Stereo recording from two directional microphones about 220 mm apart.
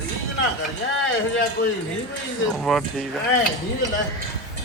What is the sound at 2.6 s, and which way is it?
Speech, centre (ahead or behind).